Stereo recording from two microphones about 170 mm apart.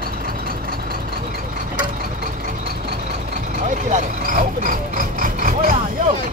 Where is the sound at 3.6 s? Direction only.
50° right (ahead or behind).